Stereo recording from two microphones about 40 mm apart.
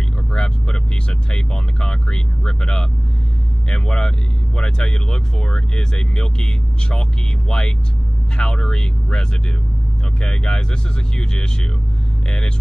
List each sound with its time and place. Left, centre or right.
0.3 s vehicle: left
1.3 s speech: left
10.2 s speech: centre